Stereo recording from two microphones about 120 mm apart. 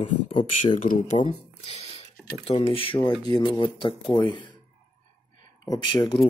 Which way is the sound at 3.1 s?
35° left (ahead or behind).